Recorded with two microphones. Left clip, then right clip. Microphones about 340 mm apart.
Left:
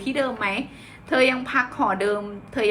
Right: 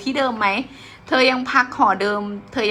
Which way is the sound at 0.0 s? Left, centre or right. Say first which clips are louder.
Right 5 dB; centre.